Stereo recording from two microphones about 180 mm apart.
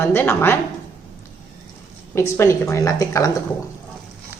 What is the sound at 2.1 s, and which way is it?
A woman's voice, 15° left (ahead or behind).